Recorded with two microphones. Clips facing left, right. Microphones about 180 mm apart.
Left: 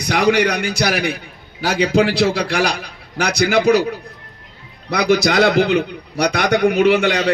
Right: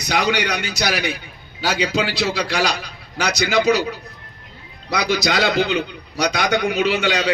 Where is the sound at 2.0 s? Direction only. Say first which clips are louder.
Left 6 dB; 55° left (ahead or behind).